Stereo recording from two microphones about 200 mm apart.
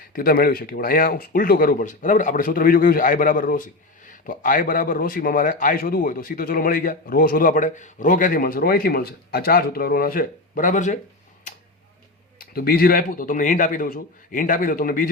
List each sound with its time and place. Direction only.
0.1 s speech: 45° left (ahead or behind)
12.5 s speech: 50° left (ahead or behind)